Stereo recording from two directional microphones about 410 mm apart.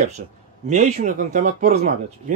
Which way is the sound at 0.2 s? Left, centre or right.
Right.